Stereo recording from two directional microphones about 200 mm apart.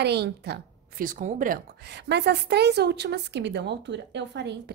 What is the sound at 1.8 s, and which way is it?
A woman's voice, 55° right (ahead or behind).